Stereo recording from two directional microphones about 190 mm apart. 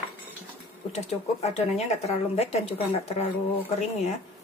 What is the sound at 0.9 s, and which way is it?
Speech, 35° left (ahead or behind).